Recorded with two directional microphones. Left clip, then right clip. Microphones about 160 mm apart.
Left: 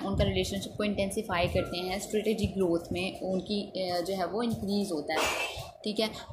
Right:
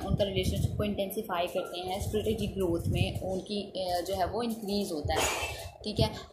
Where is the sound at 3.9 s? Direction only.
45° left (ahead or behind).